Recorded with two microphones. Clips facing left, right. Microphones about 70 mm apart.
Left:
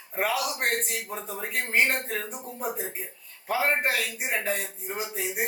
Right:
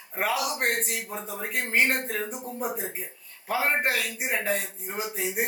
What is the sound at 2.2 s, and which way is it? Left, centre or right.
Speech, centre.